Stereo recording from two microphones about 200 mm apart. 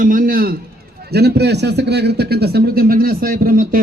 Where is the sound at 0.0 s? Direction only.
45° right (ahead or behind).